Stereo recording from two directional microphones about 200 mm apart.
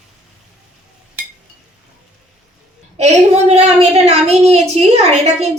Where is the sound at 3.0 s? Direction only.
30° right (ahead or behind).